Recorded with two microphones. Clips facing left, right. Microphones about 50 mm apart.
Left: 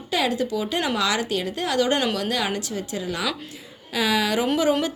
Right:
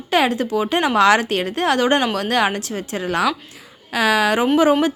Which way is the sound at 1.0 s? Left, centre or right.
Right.